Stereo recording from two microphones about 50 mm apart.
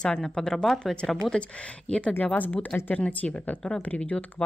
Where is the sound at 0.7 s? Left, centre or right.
Centre.